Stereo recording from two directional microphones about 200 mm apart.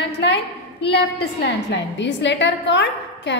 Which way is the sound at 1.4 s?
60° left (ahead or behind).